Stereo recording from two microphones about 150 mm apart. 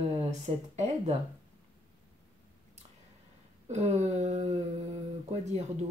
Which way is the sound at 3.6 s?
45° right (ahead or behind).